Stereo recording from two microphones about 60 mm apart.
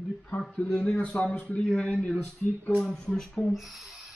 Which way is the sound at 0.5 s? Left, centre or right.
Left.